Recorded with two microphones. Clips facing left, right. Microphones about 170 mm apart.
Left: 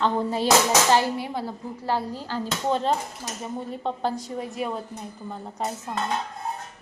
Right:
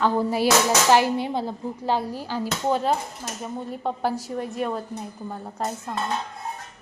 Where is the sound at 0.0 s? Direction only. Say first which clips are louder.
Right 2 dB; 5° right (ahead or behind).